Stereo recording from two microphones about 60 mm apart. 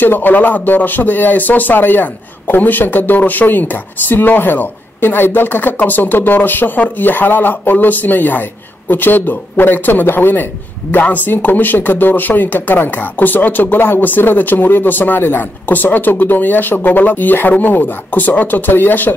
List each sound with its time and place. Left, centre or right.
0.0 s speech: left